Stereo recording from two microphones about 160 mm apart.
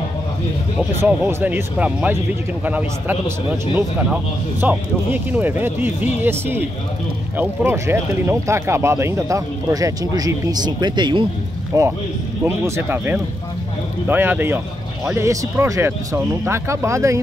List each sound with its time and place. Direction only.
1.0 s a man's voice: 10° right (ahead or behind)